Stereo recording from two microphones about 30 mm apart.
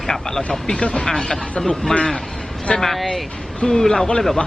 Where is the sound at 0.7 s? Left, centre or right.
Left.